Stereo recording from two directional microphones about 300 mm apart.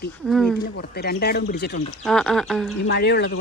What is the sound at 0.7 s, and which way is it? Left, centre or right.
Speech, left.